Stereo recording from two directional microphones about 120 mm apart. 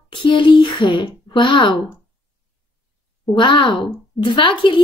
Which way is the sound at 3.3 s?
40° left (ahead or behind).